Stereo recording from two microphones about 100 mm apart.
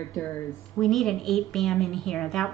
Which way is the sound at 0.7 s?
Centre (ahead or behind).